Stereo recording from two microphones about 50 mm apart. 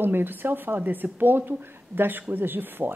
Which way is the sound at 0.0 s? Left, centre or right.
Right.